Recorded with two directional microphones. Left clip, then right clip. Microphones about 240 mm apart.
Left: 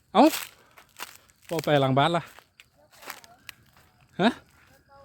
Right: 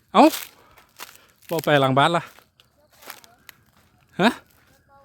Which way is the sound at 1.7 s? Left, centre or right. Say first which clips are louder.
Right 5 dB; right.